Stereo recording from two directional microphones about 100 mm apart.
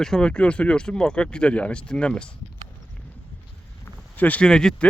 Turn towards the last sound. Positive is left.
turn(degrees=5)  # may be behind; listen again after turning